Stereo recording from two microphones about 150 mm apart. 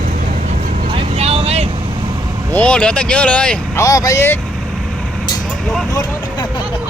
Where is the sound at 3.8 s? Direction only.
20° left (ahead or behind).